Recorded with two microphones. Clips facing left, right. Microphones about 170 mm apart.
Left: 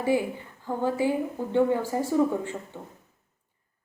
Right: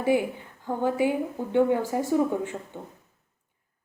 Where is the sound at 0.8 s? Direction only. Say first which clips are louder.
Right 1 dB; 20° right (ahead or behind).